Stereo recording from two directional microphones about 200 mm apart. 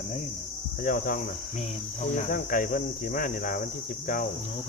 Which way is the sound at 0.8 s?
45° left (ahead or behind).